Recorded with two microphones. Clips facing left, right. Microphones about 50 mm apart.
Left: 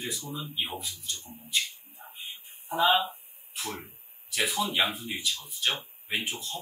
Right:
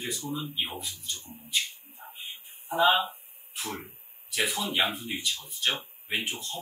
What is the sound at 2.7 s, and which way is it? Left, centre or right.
Speech, right.